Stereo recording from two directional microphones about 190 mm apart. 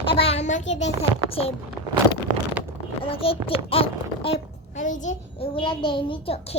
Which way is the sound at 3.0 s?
30° left (ahead or behind).